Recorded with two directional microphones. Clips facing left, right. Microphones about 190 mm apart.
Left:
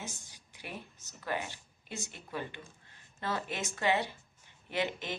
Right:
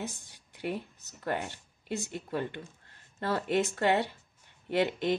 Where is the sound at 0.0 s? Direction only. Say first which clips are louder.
Right 6 dB; 60° right (ahead or behind).